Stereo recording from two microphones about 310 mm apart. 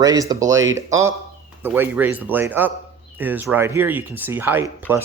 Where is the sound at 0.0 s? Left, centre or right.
Centre.